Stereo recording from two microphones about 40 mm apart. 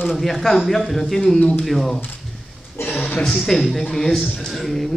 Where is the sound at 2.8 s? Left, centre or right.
Left.